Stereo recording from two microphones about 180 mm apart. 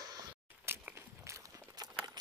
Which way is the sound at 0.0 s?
20° right (ahead or behind).